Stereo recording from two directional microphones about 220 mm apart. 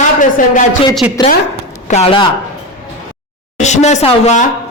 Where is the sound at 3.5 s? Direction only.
30° left (ahead or behind).